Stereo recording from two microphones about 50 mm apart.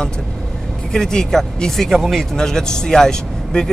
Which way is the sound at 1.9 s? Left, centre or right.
Centre.